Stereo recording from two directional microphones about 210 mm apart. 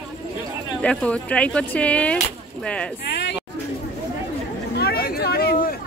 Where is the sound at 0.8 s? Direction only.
5° left (ahead or behind).